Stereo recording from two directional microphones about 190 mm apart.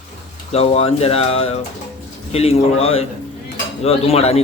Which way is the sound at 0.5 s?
30° left (ahead or behind).